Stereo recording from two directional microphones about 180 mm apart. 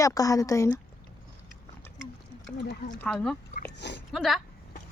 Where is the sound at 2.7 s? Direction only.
60° left (ahead or behind).